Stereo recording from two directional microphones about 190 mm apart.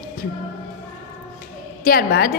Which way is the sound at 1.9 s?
50° left (ahead or behind).